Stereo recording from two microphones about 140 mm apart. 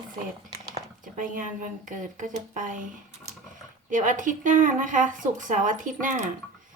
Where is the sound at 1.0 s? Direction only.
70° right (ahead or behind).